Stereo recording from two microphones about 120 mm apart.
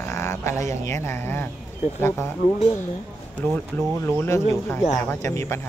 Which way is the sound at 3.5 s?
20° left (ahead or behind).